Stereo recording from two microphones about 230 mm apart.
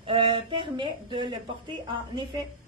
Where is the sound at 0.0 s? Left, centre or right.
Right.